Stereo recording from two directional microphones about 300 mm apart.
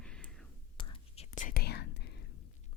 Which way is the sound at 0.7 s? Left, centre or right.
Centre.